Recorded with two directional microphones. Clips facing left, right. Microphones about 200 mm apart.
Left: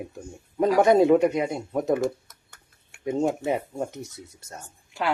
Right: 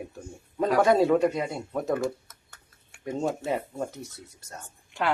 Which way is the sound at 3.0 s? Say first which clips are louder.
Left 4 dB; 20° left (ahead or behind).